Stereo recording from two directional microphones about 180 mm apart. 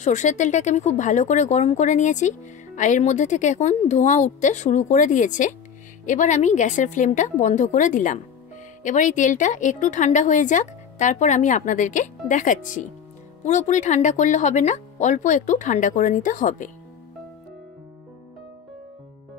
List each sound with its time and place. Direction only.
0.0 s a woman's voice: 40° left (ahead or behind)